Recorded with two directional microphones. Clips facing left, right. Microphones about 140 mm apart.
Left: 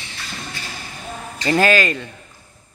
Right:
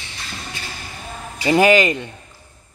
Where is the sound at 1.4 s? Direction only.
15° right (ahead or behind).